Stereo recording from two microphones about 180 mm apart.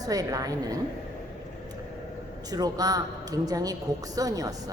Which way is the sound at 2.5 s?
20° right (ahead or behind).